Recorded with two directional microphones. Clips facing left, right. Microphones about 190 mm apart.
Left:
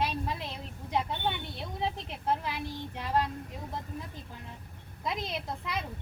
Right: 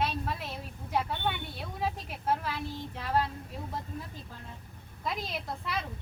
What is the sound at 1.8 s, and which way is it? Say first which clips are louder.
Speech: even; 20° left (ahead or behind).